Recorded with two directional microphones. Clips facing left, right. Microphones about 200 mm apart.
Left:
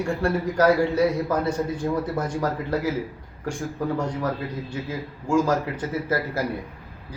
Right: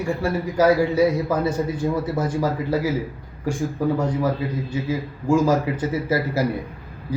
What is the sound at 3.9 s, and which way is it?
A man's voice, 5° right (ahead or behind).